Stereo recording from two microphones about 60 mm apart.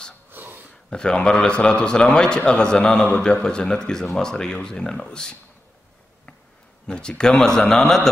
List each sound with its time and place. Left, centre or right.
0.3 s a sound: right
0.8 s a man's voice: centre
6.9 s a man's voice: centre